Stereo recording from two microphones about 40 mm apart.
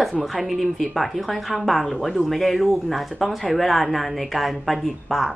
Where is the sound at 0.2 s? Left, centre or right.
Centre.